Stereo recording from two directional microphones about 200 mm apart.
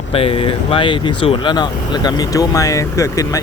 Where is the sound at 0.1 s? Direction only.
30° left (ahead or behind).